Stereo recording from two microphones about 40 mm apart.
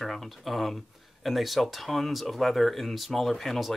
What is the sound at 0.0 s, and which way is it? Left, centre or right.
Speech, centre.